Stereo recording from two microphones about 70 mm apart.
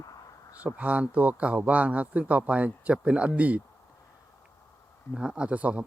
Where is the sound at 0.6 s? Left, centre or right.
Centre.